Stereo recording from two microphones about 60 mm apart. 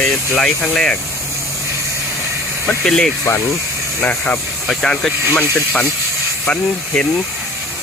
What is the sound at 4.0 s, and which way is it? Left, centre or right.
Speech, left.